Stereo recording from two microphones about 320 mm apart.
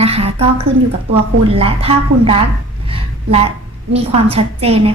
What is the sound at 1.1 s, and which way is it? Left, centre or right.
A woman's voice, centre.